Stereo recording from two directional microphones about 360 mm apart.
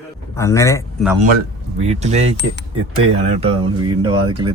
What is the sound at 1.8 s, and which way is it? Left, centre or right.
Speech, centre.